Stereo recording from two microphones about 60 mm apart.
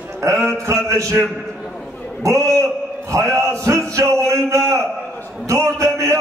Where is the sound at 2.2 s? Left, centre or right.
Right.